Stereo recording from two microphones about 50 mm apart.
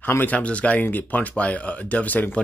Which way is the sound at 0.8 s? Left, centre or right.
Left.